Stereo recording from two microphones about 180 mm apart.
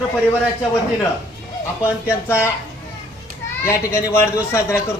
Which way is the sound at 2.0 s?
15° left (ahead or behind).